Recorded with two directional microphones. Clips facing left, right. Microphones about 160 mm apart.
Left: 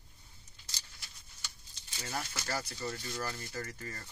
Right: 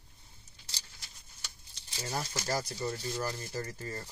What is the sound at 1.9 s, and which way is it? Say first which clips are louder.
Speech: right 3 dB; 35° right (ahead or behind).